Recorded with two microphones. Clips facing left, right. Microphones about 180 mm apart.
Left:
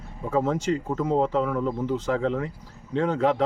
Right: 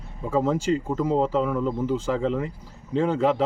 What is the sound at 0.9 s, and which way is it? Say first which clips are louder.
Speech: left 1 dB; centre (ahead or behind).